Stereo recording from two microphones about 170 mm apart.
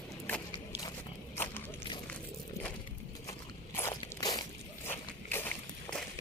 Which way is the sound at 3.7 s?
15° left (ahead or behind).